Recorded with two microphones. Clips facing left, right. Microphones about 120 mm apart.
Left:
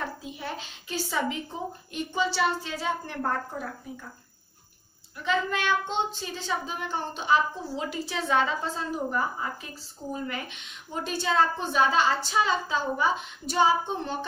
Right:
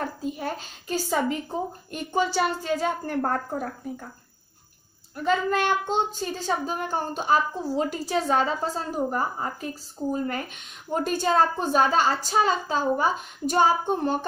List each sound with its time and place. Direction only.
0.0 s a woman's voice: 45° right (ahead or behind)
5.1 s a woman's voice: 45° right (ahead or behind)